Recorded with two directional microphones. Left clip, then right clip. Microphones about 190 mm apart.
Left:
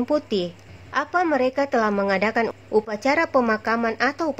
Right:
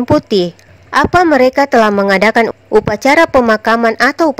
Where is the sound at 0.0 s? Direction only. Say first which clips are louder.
Right 11 dB; 45° right (ahead or behind).